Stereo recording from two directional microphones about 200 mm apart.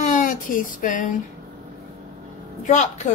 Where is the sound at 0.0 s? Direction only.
40° left (ahead or behind).